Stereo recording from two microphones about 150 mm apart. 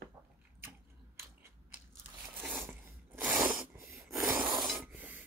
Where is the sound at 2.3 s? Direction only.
10° right (ahead or behind).